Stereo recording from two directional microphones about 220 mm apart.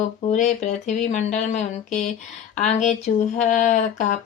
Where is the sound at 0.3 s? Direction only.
30° left (ahead or behind).